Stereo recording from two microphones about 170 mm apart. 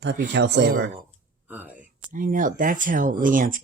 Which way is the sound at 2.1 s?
50° right (ahead or behind).